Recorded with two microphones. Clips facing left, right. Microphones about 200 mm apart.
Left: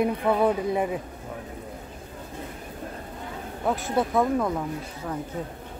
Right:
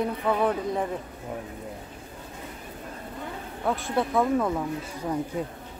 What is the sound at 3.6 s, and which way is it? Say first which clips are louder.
Speech: left 1 dB; 5° left (ahead or behind).